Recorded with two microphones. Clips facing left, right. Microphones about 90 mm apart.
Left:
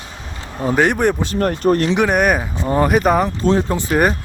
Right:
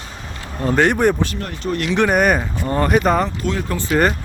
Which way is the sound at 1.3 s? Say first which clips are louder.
Left 8 dB; 50° left (ahead or behind).